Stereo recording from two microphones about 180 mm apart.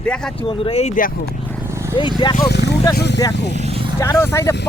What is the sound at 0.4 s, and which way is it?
Speech, 30° left (ahead or behind).